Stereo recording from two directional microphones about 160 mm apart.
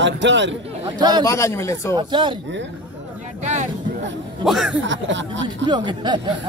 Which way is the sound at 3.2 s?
50° right (ahead or behind).